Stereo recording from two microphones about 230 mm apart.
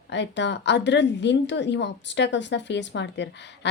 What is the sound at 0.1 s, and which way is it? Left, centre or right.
A woman's voice, left.